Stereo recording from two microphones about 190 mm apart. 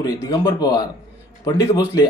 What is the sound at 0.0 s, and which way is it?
Speech, 20° left (ahead or behind).